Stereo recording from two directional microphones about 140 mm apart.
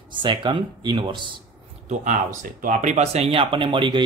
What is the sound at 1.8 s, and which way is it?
A man's voice, 60° right (ahead or behind).